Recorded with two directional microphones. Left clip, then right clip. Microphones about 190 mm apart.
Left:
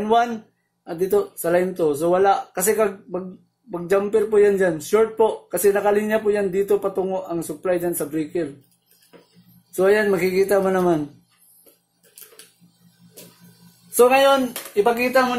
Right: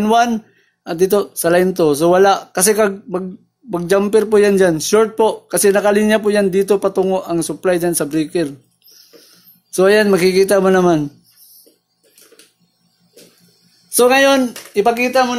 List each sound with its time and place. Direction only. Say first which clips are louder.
0.0 s a man's voice: right 5 dB; 55° right (ahead or behind)
9.7 s a man's voice: right 6 dB; 55° right (ahead or behind)
13.9 s speech: right 3 dB; 55° right (ahead or behind)